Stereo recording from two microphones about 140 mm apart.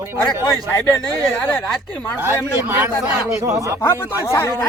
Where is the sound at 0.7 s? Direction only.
15° left (ahead or behind).